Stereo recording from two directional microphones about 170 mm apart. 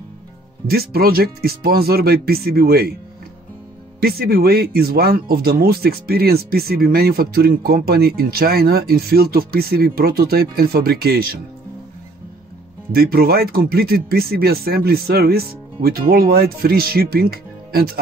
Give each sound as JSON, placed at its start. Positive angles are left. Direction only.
{"t": 0.7, "sound": "speech", "side_deg": -65}
{"t": 4.0, "sound": "speech", "side_deg": -65}
{"t": 12.9, "sound": "speech", "side_deg": -65}